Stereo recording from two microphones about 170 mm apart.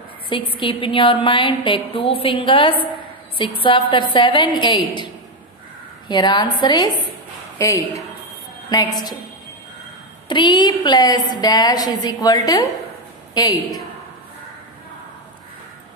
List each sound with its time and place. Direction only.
0.6 s a woman's voice: 30° left (ahead or behind)
10.2 s a woman's voice: 25° left (ahead or behind)